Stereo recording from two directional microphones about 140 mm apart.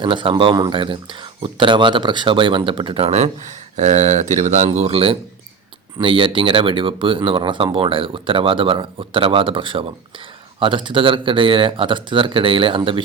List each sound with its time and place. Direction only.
0.0 s speech: 35° right (ahead or behind)
3.8 s speech: 60° right (ahead or behind); by 13.0 s 40° right (ahead or behind)